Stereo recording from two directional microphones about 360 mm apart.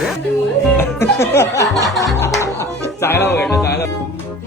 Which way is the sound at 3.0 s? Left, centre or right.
Centre.